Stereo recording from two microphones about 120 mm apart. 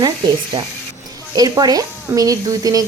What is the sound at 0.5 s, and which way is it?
Speech, 50° right (ahead or behind).